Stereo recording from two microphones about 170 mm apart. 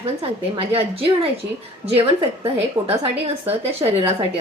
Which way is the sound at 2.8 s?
15° right (ahead or behind).